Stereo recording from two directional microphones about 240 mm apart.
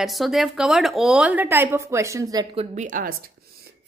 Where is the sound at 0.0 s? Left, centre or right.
Centre.